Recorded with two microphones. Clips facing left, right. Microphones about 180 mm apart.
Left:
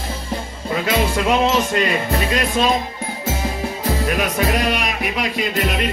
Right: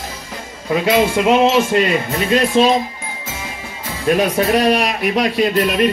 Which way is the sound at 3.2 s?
40° left (ahead or behind).